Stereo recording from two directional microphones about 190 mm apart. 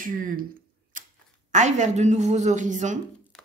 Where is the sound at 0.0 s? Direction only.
45° right (ahead or behind).